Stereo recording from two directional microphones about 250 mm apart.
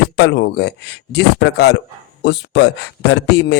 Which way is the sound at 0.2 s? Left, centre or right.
Left.